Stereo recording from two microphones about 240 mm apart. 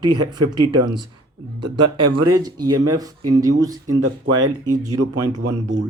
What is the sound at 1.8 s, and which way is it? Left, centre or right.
Speech, right.